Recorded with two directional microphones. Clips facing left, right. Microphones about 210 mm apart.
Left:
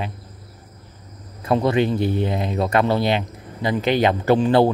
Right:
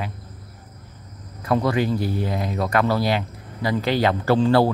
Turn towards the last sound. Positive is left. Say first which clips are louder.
# left 2 dB
turn(degrees=20)  # may be behind; listen again after turning